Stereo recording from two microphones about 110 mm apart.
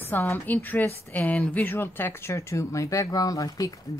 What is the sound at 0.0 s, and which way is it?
A woman's voice, 20° left (ahead or behind).